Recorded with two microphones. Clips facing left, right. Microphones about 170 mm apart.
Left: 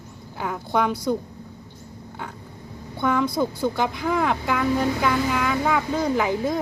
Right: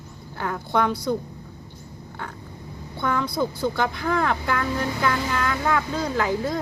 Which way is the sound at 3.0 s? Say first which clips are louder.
Left 2 dB; 15° left (ahead or behind).